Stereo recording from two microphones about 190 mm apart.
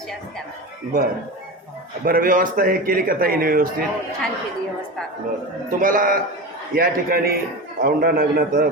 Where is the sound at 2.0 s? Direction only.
50° right (ahead or behind).